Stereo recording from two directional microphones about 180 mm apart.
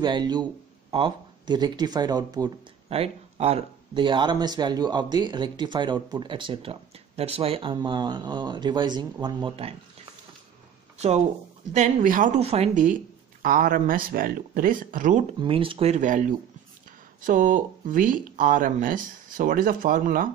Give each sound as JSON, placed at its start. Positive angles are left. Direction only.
{"t": 0.0, "sound": "speech", "side_deg": -25}
{"t": 2.9, "sound": "speech", "side_deg": -35}
{"t": 11.7, "sound": "speech", "side_deg": -45}
{"t": 15.4, "sound": "speech", "side_deg": -30}